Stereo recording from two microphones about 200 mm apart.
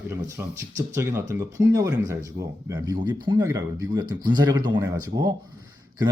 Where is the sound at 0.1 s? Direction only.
15° right (ahead or behind).